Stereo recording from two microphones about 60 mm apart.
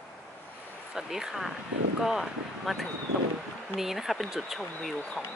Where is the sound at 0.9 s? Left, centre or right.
Centre.